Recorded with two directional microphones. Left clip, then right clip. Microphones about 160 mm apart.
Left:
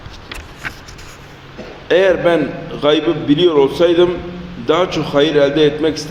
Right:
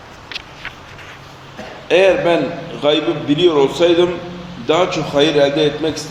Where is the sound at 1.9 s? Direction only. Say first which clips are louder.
Even; 15° left (ahead or behind).